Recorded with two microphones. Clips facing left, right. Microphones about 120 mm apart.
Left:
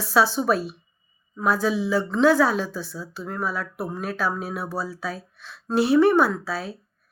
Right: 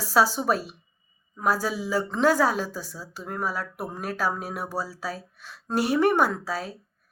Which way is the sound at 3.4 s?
40° right (ahead or behind).